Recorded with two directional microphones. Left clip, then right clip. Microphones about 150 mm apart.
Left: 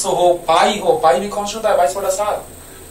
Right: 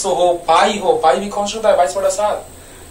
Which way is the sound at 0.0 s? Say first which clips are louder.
Even; 20° right (ahead or behind).